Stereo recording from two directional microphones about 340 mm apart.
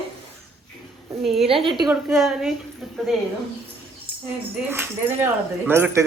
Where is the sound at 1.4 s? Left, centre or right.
Centre.